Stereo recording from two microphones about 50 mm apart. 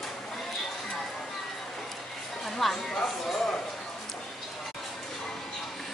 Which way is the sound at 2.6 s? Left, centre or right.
Centre.